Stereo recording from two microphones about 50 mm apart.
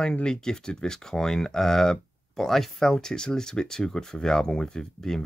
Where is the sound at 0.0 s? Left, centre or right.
Centre.